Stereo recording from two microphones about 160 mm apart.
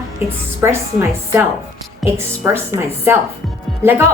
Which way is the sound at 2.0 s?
15° right (ahead or behind).